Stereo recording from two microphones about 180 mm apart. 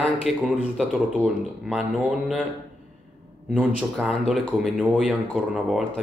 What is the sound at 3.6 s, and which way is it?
Speech, 5° right (ahead or behind).